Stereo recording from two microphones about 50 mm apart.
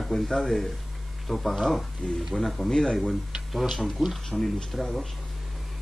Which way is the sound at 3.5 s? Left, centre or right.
Centre.